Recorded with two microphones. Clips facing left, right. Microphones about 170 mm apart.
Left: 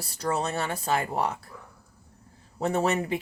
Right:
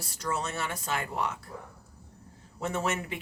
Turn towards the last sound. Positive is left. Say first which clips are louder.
# left 6 dB
turn(degrees=35)  # may be behind; listen again after turning